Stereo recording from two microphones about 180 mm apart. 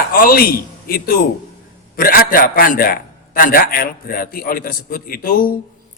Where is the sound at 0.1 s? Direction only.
55° left (ahead or behind).